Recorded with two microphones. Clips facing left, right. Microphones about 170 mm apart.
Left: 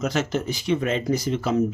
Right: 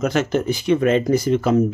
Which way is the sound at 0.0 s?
55° right (ahead or behind).